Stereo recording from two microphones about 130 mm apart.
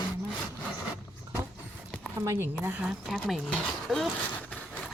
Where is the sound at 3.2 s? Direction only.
Centre (ahead or behind).